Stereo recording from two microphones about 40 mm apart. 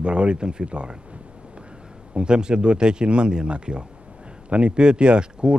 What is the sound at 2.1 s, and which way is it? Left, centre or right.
Speech, right.